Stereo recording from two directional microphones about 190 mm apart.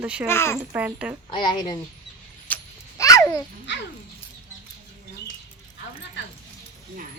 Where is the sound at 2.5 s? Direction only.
10° left (ahead or behind).